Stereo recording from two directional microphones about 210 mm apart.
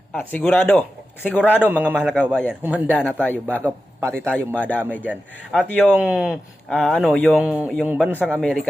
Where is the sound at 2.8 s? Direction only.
10° left (ahead or behind).